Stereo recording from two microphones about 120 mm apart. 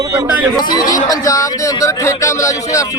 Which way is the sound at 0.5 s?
35° left (ahead or behind).